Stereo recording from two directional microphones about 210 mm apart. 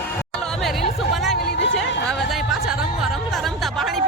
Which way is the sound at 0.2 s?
5° left (ahead or behind).